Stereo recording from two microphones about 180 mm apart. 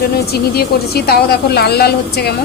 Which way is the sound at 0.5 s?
60° left (ahead or behind).